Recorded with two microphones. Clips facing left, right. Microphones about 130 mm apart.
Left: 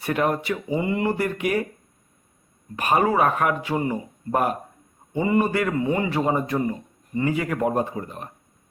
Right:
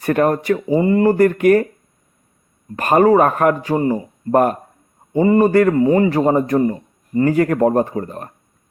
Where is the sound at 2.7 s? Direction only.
45° right (ahead or behind).